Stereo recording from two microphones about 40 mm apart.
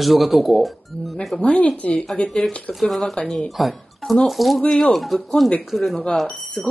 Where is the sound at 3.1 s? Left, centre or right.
Centre.